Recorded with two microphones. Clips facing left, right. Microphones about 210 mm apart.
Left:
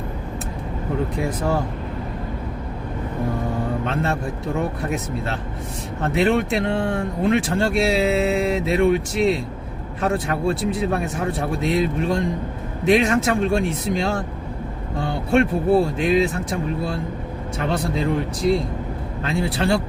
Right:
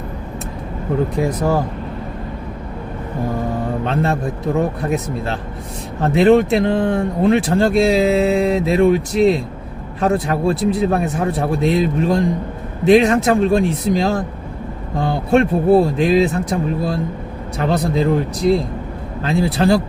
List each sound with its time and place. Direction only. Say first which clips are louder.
1.2 s speech: right 7 dB; 35° right (ahead or behind)
3.8 s speech: right 4 dB; 35° right (ahead or behind)
19.2 s speech: right 6 dB; 35° right (ahead or behind)